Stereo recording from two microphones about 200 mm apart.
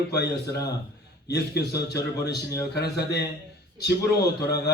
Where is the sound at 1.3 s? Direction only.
55° left (ahead or behind).